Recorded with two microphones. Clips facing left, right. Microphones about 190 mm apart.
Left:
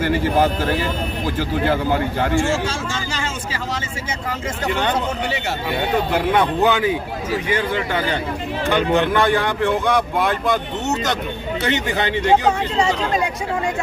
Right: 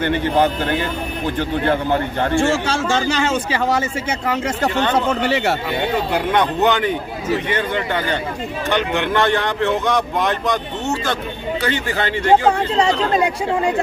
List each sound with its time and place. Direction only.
0.0 s speech: 5° left (ahead or behind)
1.7 s speech: 10° left (ahead or behind)
2.4 s speech: 65° right (ahead or behind)
4.9 s speech: 65° right (ahead or behind)
6.3 s speech: 10° left (ahead or behind)
11.6 s speech: 20° left (ahead or behind)